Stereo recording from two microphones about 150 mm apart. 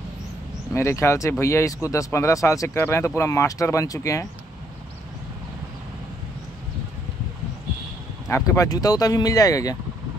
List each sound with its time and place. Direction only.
0.7 s speech: 20° left (ahead or behind)
8.3 s speech: 20° left (ahead or behind)